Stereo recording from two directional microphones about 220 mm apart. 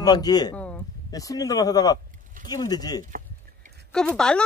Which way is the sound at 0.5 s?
5° left (ahead or behind).